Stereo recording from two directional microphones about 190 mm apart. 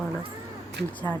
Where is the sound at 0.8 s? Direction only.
60° right (ahead or behind).